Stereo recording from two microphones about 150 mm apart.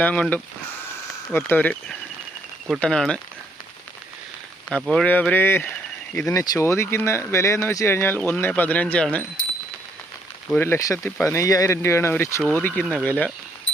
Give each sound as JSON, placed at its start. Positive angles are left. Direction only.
{"t": 0.0, "sound": "speech", "side_deg": 10}
{"t": 2.6, "sound": "speech", "side_deg": 0}
{"t": 4.7, "sound": "speech", "side_deg": 5}
{"t": 10.5, "sound": "speech", "side_deg": 15}